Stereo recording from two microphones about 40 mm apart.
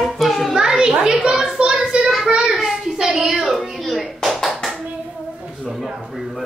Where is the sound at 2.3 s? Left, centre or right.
Centre.